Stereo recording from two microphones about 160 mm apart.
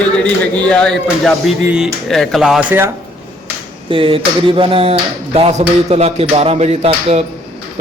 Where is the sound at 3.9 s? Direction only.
35° right (ahead or behind).